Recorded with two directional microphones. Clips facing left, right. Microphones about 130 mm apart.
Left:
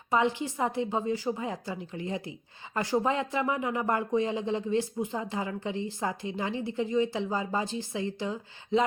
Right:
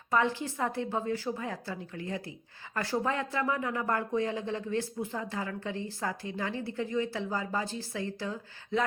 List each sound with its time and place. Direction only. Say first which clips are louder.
0.1 s speech: left 2 dB; 20° left (ahead or behind)